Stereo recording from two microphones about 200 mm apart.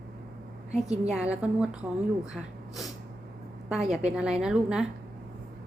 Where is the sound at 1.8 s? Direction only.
15° right (ahead or behind).